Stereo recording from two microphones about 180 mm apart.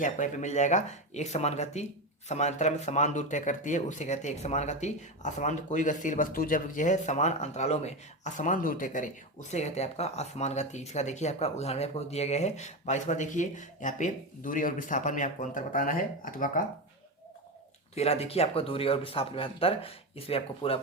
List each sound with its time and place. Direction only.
0.0 s speech: 45° left (ahead or behind)
17.9 s speech: 35° left (ahead or behind)